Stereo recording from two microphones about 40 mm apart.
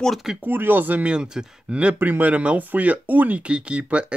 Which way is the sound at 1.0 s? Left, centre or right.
Right.